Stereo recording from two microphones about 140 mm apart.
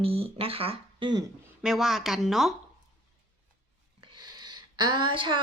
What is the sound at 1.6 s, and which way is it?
Speech, 5° right (ahead or behind).